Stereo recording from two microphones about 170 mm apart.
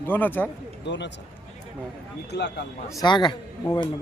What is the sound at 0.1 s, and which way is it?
Speech, 10° left (ahead or behind).